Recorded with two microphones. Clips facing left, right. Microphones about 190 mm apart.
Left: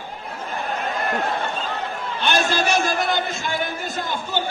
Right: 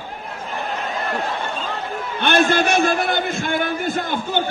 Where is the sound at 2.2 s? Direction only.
55° right (ahead or behind).